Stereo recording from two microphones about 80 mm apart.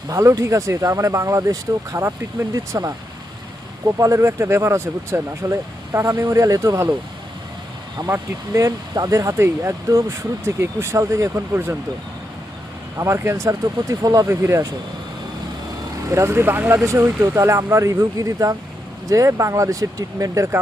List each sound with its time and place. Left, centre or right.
0.1 s speech: right
3.9 s speech: right
8.0 s speech: right
13.0 s speech: right
14.3 s speech: right
16.1 s speech: right